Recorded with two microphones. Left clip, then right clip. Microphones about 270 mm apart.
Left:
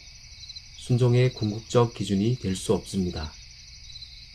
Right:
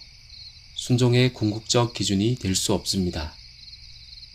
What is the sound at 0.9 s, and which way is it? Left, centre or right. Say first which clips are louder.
Speech: right 2 dB; right.